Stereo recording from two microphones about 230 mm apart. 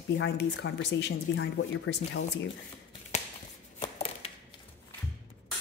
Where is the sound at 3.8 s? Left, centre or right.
Left.